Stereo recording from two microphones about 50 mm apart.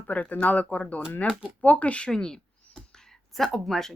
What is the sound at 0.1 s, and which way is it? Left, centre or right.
Speech, left.